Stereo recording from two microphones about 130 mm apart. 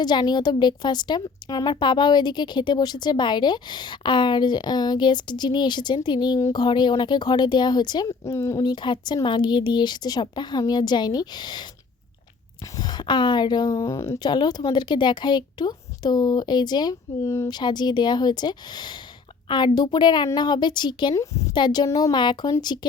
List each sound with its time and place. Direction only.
0.0 s a woman's voice: 35° left (ahead or behind)
8.2 s speech: 20° left (ahead or behind)
8.6 s a woman's voice: 35° left (ahead or behind)
12.7 s a woman's voice: 35° left (ahead or behind)
21.2 s speech: 25° left (ahead or behind)
21.5 s a woman's voice: 35° left (ahead or behind)